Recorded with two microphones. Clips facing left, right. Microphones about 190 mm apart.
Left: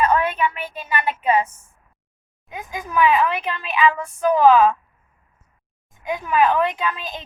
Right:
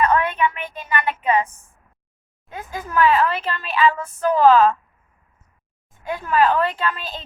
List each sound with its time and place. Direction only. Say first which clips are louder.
0.0 s a woman's voice: even; 10° left (ahead or behind)
6.0 s a woman's voice: even; 15° left (ahead or behind)